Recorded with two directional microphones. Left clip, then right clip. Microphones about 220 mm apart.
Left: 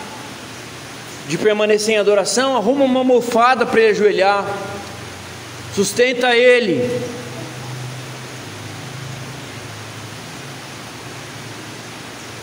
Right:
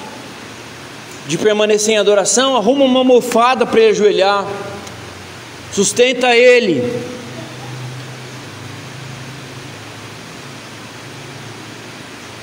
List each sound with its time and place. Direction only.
1.3 s a man's voice: 20° right (ahead or behind)
5.8 s a man's voice: 20° right (ahead or behind)